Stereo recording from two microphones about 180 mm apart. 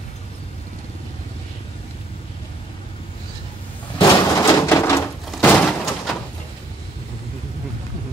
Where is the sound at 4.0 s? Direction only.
20° left (ahead or behind).